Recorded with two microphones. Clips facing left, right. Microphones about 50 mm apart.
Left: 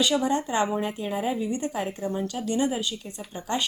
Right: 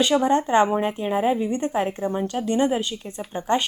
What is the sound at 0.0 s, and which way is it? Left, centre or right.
A woman's voice, right.